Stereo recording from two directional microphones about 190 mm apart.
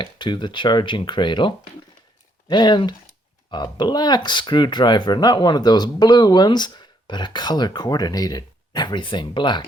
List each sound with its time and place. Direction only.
0.0 s speech: 25° left (ahead or behind)